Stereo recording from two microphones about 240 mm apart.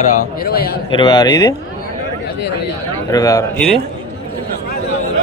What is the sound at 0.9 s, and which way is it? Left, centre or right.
Speech, centre.